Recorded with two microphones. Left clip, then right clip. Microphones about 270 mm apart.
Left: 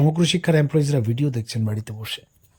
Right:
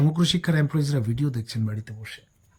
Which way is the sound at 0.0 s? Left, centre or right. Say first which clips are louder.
Left 4 dB; centre.